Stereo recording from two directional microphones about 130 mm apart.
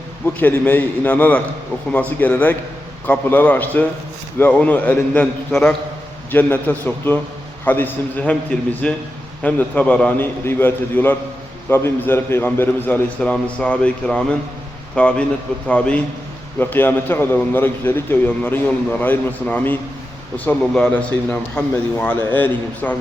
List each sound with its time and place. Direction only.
0.3 s a man's voice: 15° left (ahead or behind)